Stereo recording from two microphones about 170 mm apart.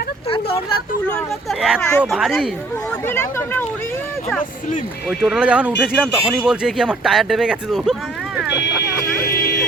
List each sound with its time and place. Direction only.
0.3 s vehicle: 35° left (ahead or behind)
1.0 s speech: 5° left (ahead or behind)
2.1 s speech: 5° right (ahead or behind)
3.1 s speech: 15° left (ahead or behind)
5.0 s speech: centre (ahead or behind)
8.4 s vehicle: 80° left; by 9.6 s 60° left (ahead or behind)